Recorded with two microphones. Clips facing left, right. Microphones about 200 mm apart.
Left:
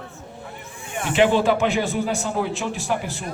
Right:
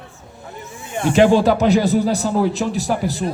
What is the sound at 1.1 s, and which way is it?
Speech, 40° right (ahead or behind).